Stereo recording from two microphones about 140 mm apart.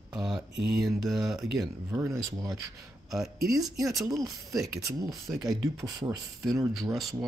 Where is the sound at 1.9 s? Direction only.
15° right (ahead or behind).